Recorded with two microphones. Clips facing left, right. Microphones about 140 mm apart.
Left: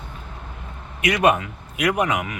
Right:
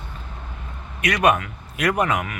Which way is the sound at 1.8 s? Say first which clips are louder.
Even; 15° left (ahead or behind).